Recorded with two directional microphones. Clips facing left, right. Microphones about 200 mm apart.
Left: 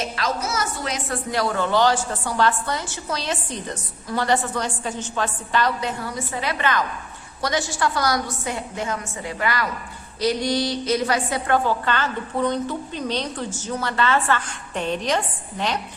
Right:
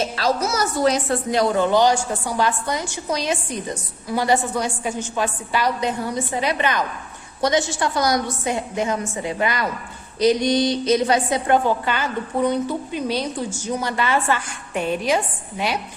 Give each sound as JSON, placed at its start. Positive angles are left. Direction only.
{"t": 0.0, "sound": "a woman's voice", "side_deg": -35}
{"t": 1.3, "sound": "a woman's voice", "side_deg": -20}